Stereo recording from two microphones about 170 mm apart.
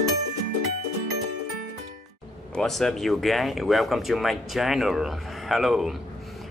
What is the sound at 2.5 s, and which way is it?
Speech, centre (ahead or behind).